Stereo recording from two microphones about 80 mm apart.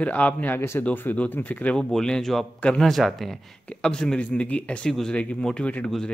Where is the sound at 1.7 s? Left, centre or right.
Centre.